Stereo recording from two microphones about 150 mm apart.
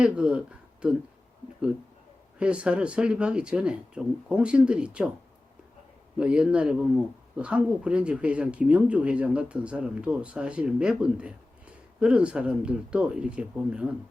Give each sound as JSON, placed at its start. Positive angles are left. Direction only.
{"t": 0.0, "sound": "speech", "side_deg": -5}
{"t": 2.4, "sound": "speech", "side_deg": -5}
{"t": 6.1, "sound": "speech", "side_deg": -5}